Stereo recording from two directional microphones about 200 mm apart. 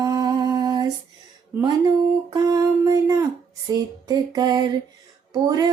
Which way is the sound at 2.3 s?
20° right (ahead or behind).